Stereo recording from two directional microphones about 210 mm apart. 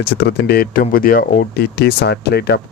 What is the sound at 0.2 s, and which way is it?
Speech, 50° left (ahead or behind).